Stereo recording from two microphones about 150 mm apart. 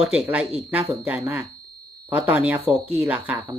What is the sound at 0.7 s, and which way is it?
Speech, 10° right (ahead or behind).